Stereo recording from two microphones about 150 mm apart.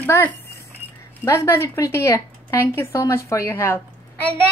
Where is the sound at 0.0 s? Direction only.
15° left (ahead or behind).